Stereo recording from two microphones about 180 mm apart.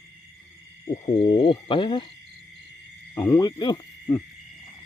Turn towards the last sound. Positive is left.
turn(degrees=25)  # may be behind; listen again after turning